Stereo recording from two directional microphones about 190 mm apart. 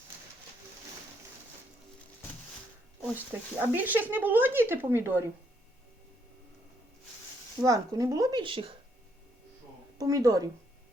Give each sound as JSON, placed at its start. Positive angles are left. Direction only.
{"t": 3.0, "sound": "speech", "side_deg": -10}
{"t": 7.6, "sound": "speech", "side_deg": -15}
{"t": 10.0, "sound": "speech", "side_deg": -15}